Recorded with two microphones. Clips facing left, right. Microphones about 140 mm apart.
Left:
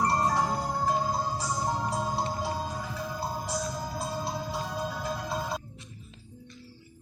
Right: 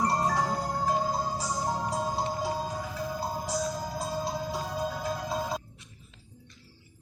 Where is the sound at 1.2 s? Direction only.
10° right (ahead or behind).